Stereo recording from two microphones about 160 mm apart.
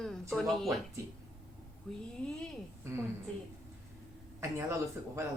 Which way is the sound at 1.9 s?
Centre (ahead or behind).